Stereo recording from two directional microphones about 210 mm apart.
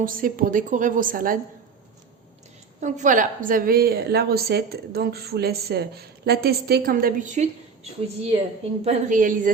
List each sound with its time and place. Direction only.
0.0 s a woman's voice: 40° right (ahead or behind)
2.8 s a woman's voice: 35° right (ahead or behind)